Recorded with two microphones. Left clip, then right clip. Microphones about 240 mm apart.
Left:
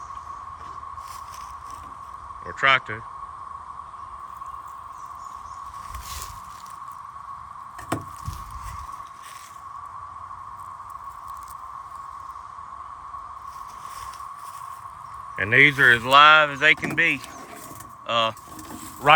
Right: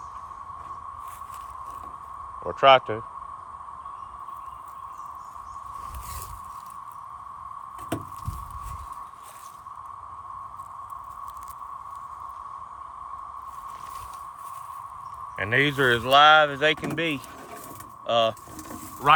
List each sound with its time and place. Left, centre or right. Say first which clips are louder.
2.5 s speech: right 3 dB; left
15.4 s speech: left 6 dB; centre